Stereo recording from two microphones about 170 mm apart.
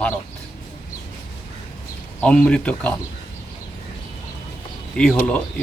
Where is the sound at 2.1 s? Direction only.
5° left (ahead or behind).